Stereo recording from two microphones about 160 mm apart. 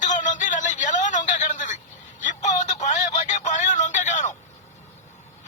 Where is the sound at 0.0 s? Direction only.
50° left (ahead or behind).